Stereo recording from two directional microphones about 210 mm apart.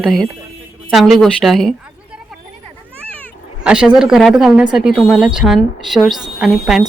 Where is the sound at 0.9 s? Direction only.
Centre (ahead or behind).